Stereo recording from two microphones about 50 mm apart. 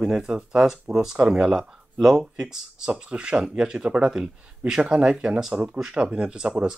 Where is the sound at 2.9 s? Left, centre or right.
Centre.